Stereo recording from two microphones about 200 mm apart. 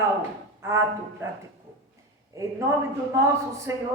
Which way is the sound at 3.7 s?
15° right (ahead or behind).